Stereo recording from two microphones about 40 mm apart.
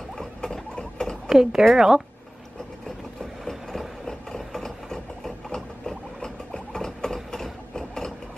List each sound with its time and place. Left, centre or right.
0.2 s rodents: centre
1.3 s a woman's voice: centre
4.1 s a sound: centre